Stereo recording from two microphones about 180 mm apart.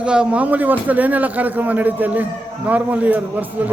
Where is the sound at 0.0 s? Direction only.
5° right (ahead or behind).